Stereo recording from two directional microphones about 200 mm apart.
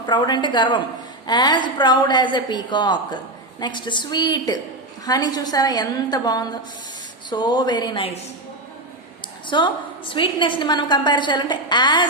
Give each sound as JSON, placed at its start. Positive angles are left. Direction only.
{"t": 0.0, "sound": "a woman's voice", "side_deg": 20}
{"t": 9.5, "sound": "a woman's voice", "side_deg": 25}